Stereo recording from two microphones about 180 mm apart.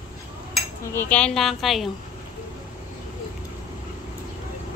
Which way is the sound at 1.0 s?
5° left (ahead or behind).